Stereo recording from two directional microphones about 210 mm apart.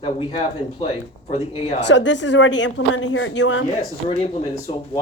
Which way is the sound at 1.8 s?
60° left (ahead or behind).